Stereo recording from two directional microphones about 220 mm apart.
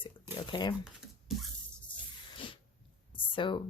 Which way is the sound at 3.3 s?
20° left (ahead or behind).